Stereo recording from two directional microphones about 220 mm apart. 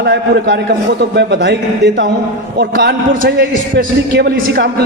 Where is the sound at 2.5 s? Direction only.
45° right (ahead or behind).